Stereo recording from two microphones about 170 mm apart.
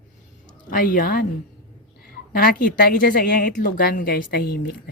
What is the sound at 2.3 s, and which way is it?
A woman's voice, 60° left (ahead or behind).